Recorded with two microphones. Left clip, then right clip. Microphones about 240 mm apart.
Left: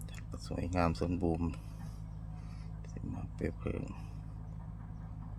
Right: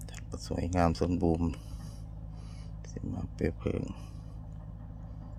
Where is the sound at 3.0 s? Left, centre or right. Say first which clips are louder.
Right 6 dB; centre.